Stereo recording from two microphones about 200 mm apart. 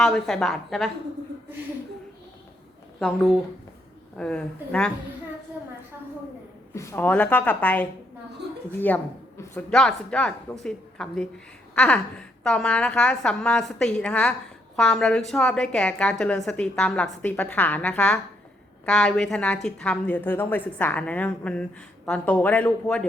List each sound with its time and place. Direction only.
0.0 s a woman's voice: 5° left (ahead or behind)
3.0 s a woman's voice: centre (ahead or behind)
6.7 s speech: 10° left (ahead or behind)
8.9 s a woman's voice: 10° left (ahead or behind)
11.7 s a sound: 5° left (ahead or behind)
12.4 s a woman's voice: 5° left (ahead or behind)